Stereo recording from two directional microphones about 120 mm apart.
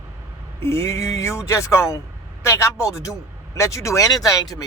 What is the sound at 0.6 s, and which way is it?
A man's voice, 20° left (ahead or behind).